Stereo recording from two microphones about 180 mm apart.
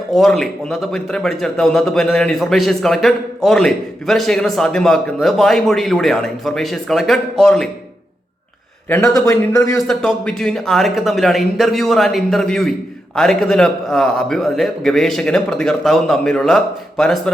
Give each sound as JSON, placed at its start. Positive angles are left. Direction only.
{"t": 0.1, "sound": "a man's voice", "side_deg": 0}
{"t": 8.9, "sound": "a man's voice", "side_deg": 15}
{"t": 9.8, "sound": "a man's voice", "side_deg": 5}